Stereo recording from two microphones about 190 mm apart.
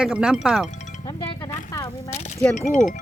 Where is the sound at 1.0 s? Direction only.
20° left (ahead or behind).